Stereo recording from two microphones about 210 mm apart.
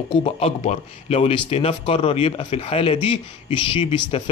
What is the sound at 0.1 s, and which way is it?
Speech, 30° left (ahead or behind).